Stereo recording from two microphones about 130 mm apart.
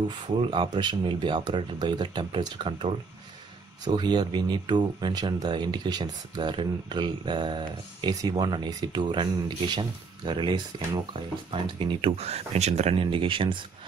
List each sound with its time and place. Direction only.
0.1 s speech: 40° right (ahead or behind)